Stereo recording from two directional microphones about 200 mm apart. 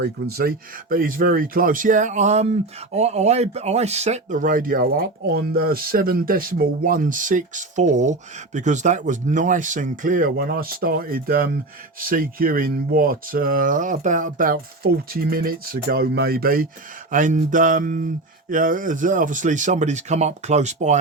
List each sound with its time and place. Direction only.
0.0 s speech: 50° right (ahead or behind); by 21.0 s 35° right (ahead or behind)